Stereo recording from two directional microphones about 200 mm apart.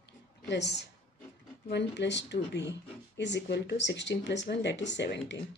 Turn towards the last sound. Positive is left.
turn(degrees=60)  # may be behind; listen again after turning